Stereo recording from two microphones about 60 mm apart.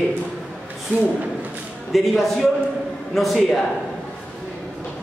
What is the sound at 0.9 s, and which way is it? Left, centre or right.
Speech, right.